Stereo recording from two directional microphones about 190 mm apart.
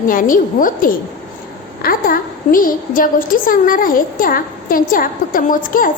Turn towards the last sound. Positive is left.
turn(degrees=45)  # may be behind; listen again after turning